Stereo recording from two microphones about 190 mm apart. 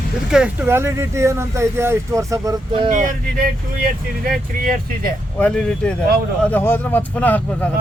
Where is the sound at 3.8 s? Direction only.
50° right (ahead or behind).